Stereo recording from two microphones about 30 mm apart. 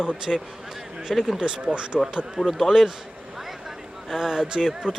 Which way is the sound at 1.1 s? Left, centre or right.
Centre.